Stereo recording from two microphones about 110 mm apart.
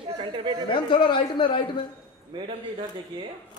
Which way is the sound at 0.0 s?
55° right (ahead or behind).